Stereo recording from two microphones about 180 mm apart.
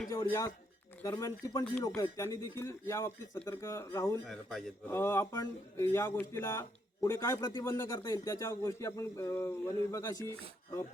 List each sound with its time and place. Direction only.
0.1 s a man's voice: 20° left (ahead or behind)
4.3 s a man's voice: centre (ahead or behind)
4.9 s a man's voice: 15° left (ahead or behind)